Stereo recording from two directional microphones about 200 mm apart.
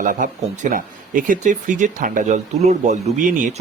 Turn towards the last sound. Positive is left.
turn(degrees=-40)  # may be behind; listen again after turning